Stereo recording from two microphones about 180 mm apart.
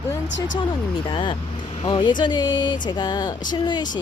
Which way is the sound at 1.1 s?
30° left (ahead or behind).